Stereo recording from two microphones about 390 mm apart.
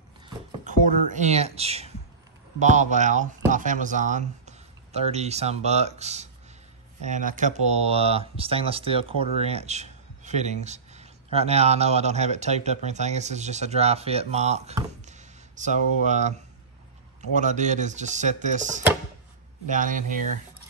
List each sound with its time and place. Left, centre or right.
0.7 s speech: centre